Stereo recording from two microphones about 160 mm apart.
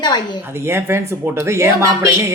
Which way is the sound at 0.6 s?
15° right (ahead or behind).